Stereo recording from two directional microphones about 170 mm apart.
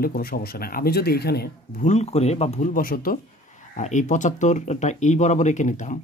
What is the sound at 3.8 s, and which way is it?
Speech, 45° left (ahead or behind).